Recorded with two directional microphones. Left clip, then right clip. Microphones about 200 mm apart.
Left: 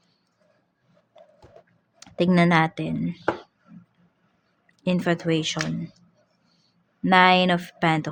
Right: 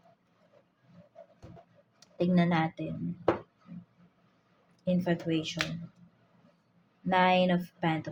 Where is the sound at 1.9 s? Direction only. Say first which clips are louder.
Left 8 dB; 50° left (ahead or behind).